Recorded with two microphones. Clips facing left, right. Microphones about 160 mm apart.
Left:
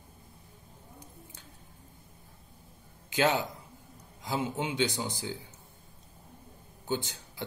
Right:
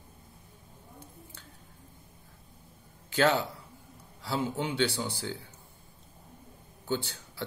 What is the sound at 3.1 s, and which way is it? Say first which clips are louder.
A man's voice: right 1 dB; 15° left (ahead or behind).